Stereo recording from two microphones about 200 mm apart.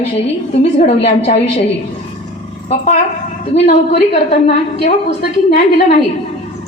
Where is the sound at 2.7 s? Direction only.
35° left (ahead or behind).